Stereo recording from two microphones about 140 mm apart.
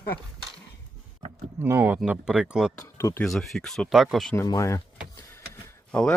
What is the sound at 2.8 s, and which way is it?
Speech, 20° left (ahead or behind).